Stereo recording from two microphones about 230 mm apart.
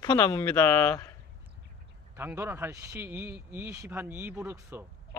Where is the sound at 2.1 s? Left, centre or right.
Centre.